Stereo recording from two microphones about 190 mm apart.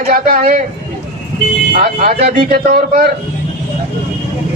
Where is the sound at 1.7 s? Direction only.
50° right (ahead or behind).